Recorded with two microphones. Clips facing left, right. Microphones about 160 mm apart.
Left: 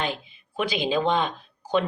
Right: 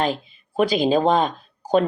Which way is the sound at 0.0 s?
40° right (ahead or behind).